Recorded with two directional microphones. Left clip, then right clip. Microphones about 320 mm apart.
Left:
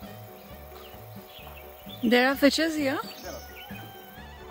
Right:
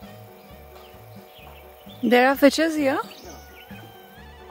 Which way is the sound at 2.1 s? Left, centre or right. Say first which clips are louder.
Right 5 dB; centre.